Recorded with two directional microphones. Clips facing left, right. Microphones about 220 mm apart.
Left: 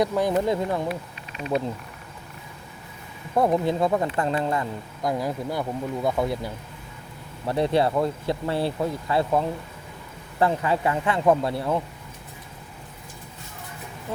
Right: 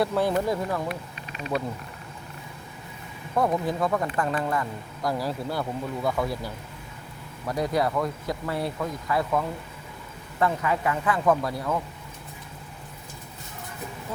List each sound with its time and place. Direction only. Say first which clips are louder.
0.0 s speech: left 2 dB; 15° left (ahead or behind)
3.3 s speech: left 3 dB; 25° left (ahead or behind)